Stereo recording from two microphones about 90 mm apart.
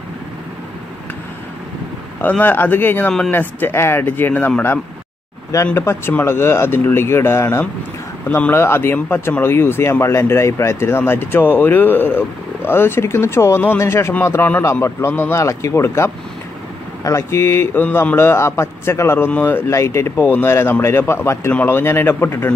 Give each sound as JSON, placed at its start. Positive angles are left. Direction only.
{"t": 2.2, "sound": "speech", "side_deg": 20}
{"t": 5.8, "sound": "speech", "side_deg": 25}